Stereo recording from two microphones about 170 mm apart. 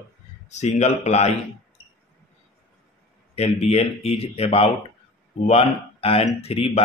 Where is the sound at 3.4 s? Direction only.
40° left (ahead or behind).